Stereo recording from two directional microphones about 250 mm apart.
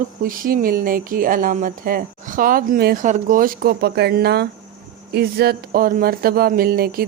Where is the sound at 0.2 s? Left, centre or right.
Right.